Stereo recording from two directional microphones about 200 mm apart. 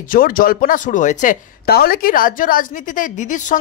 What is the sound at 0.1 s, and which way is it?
Speech, 45° left (ahead or behind).